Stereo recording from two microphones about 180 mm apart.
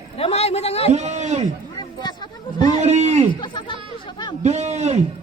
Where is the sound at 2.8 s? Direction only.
40° right (ahead or behind).